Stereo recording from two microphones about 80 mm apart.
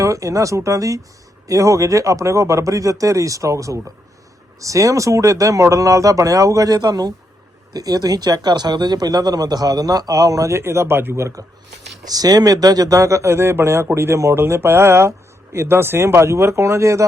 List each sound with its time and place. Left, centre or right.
0.0 s speech: right
12.0 s speech: right